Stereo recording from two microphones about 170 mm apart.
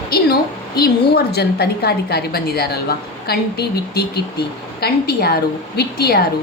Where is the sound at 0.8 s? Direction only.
70° left (ahead or behind).